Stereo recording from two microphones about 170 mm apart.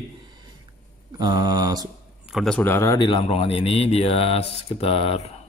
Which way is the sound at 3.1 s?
35° left (ahead or behind).